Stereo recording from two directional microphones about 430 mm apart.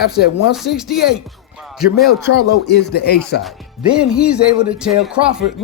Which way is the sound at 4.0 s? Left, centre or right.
Centre.